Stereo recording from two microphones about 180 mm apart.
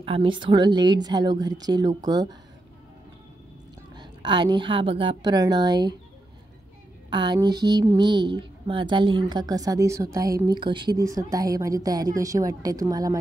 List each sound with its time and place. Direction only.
0.0 s speech: 30° right (ahead or behind)
3.9 s speech: 25° right (ahead or behind)
7.1 s speech: 25° right (ahead or behind)